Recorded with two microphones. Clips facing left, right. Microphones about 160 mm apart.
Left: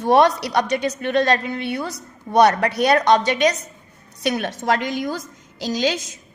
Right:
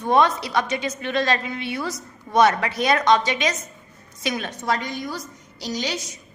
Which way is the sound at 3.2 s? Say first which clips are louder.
Left 6 dB; 55° left (ahead or behind).